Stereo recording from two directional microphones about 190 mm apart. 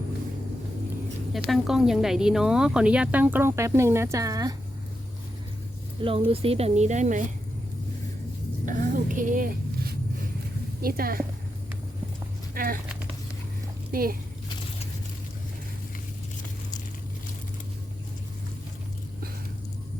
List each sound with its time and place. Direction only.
1.5 s speech: centre (ahead or behind); by 4.5 s 20° right (ahead or behind)
6.0 s a woman's voice: 30° right (ahead or behind)
8.6 s a sound: 40° right (ahead or behind)
10.8 s a woman's voice: 50° right (ahead or behind)
12.5 s speech: 50° right (ahead or behind)
13.9 s speech: 50° right (ahead or behind)